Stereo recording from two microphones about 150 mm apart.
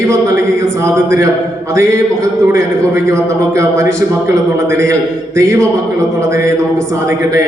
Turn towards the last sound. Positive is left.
turn(degrees=-20)  # may be behind; listen again after turning